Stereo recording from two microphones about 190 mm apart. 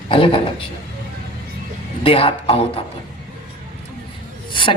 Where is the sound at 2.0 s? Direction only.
30° left (ahead or behind).